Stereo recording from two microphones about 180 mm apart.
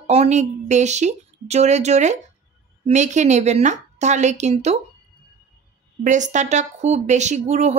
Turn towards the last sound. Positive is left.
turn(degrees=-40)  # may be behind; listen again after turning